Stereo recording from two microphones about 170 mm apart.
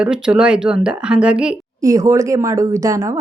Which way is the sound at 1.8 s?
20° right (ahead or behind).